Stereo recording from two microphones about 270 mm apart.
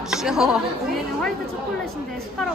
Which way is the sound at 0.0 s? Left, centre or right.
Centre.